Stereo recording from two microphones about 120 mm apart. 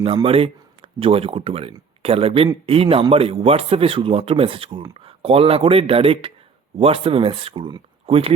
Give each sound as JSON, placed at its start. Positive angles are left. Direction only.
{"t": 0.3, "sound": "speech", "side_deg": -50}